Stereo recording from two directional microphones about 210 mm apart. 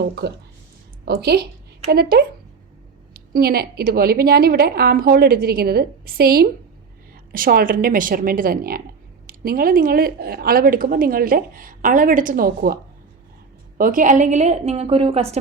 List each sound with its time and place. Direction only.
0.2 s a woman's voice: 50° right (ahead or behind); by 15.4 s 30° right (ahead or behind)